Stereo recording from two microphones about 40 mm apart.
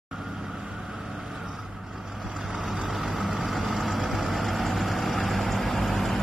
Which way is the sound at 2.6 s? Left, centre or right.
Centre.